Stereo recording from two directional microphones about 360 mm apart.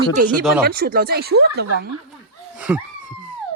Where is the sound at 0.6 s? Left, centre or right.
Right.